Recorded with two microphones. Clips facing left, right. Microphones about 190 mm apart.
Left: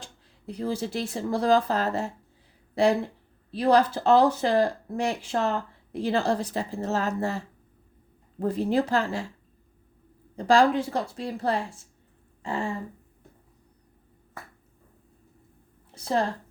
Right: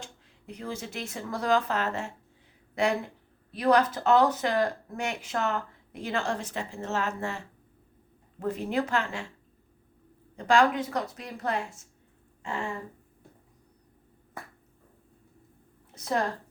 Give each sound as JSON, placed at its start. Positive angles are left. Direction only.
{"t": 0.0, "sound": "speech", "side_deg": 35}
{"t": 10.3, "sound": "speech", "side_deg": 35}
{"t": 12.4, "sound": "a sound", "side_deg": 35}
{"t": 16.0, "sound": "a woman's voice", "side_deg": 30}